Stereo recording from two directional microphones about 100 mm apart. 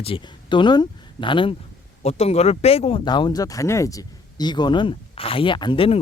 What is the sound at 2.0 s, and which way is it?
Speech, 90° left.